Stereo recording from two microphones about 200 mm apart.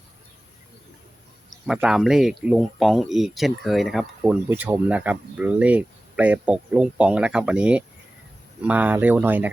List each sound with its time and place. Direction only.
1.6 s speech: 5° right (ahead or behind)